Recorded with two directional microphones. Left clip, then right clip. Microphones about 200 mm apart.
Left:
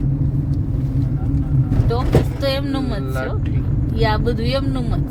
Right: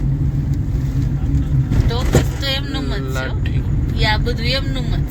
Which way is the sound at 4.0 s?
50° left (ahead or behind).